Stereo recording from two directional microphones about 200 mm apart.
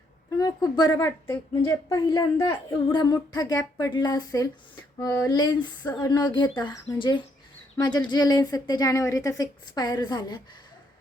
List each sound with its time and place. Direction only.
0.3 s a woman's voice: 20° left (ahead or behind)